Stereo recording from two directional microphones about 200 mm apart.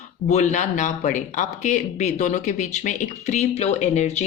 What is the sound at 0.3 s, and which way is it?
Speech, 35° left (ahead or behind).